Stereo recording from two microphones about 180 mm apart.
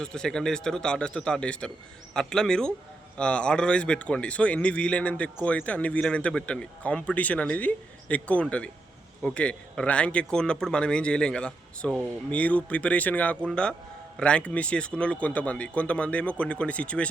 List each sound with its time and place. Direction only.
0.0 s a man's voice: 5° left (ahead or behind)